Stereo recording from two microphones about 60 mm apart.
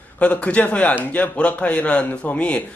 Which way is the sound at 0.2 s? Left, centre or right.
Left.